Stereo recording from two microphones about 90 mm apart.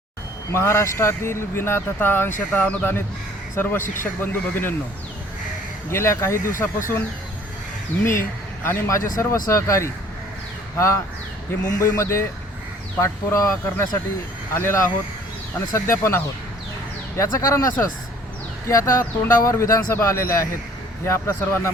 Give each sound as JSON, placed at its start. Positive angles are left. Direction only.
{"t": 0.5, "sound": "speech", "side_deg": 30}
{"t": 5.9, "sound": "speech", "side_deg": 30}
{"t": 8.6, "sound": "speech", "side_deg": 40}
{"t": 18.7, "sound": "speech", "side_deg": 35}